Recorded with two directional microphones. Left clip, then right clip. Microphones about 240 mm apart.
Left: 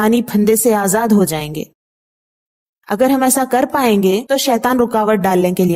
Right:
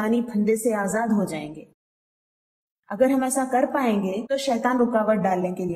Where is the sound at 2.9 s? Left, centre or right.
Left.